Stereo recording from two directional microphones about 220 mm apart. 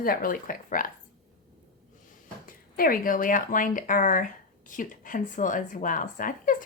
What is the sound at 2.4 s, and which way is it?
Speech, 40° left (ahead or behind).